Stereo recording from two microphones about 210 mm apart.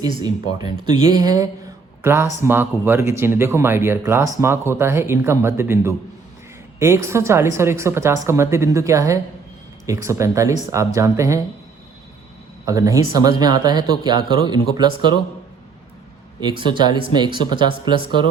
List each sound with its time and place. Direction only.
0.0 s speech: 20° right (ahead or behind)
12.6 s speech: 15° right (ahead or behind)
16.4 s speech: 20° right (ahead or behind)